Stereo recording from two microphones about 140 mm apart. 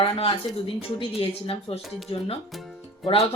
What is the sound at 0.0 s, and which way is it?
Speech, 40° left (ahead or behind).